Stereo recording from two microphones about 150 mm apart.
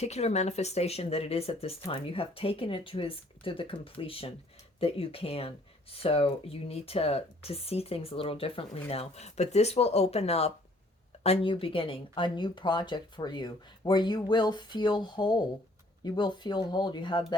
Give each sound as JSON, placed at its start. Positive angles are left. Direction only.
{"t": 0.0, "sound": "speech", "side_deg": 45}